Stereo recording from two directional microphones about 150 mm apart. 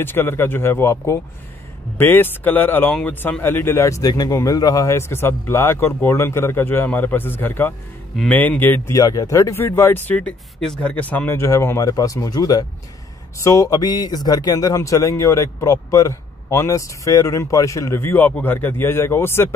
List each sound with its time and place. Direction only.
0.0 s speech: 15° left (ahead or behind)